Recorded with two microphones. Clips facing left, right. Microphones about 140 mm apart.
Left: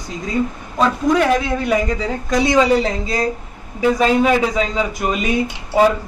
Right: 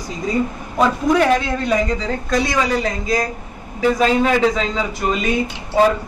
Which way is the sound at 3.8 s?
5° left (ahead or behind).